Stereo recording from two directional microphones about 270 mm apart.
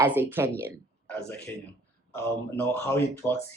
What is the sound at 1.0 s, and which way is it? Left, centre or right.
Speech, centre.